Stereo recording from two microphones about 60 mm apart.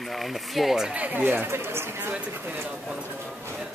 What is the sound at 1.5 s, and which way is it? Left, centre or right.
Speech, right.